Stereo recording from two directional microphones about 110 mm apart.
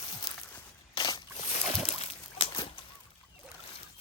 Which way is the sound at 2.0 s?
60° left (ahead or behind).